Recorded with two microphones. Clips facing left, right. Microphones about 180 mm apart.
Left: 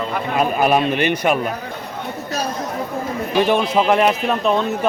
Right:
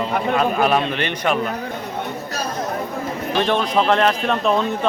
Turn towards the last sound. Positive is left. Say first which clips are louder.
# left 1 dB
turn(degrees=0)  # may be behind; listen again after turning